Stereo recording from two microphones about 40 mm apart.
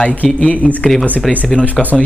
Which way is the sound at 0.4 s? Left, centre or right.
Left.